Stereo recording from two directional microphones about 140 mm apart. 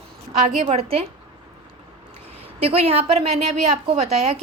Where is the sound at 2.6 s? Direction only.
45° right (ahead or behind).